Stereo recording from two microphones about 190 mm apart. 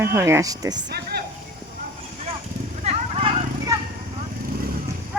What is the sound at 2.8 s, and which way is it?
Horse, 35° right (ahead or behind).